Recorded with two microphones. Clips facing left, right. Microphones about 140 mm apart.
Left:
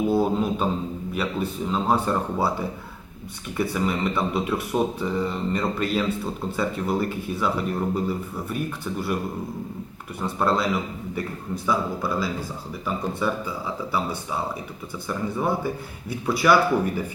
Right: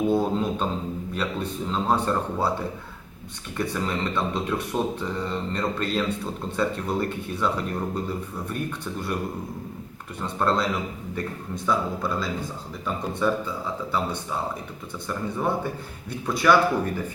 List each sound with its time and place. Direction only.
0.1 s speech: 5° left (ahead or behind)
3.6 s a man's voice: 10° left (ahead or behind)
10.2 s a man's voice: 5° left (ahead or behind)
15.0 s a man's voice: 5° left (ahead or behind)